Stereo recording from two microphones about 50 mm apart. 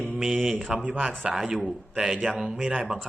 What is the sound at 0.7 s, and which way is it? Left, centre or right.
Speech, right.